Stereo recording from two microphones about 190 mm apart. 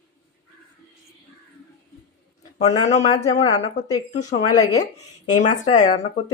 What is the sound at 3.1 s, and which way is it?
Speech, 20° left (ahead or behind).